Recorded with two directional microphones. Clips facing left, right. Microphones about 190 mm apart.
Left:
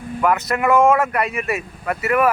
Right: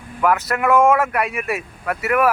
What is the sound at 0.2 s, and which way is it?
Speech, 5° right (ahead or behind).